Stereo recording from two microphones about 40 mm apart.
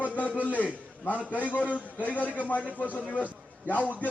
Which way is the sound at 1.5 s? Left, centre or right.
Left.